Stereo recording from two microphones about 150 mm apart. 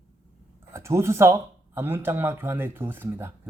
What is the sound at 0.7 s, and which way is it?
Speech, 20° right (ahead or behind).